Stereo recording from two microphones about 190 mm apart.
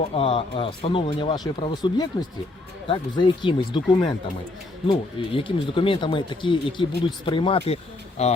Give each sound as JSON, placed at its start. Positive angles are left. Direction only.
{"t": 0.1, "sound": "speech", "side_deg": 30}